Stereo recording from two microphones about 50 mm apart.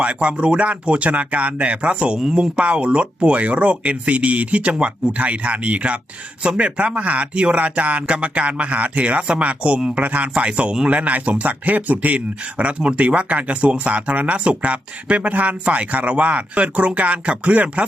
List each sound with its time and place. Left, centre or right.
0.0 s speech: right